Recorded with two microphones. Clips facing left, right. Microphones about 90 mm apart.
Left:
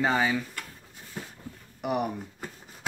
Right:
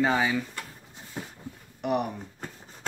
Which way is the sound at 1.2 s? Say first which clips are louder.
Right 2 dB; 20° right (ahead or behind).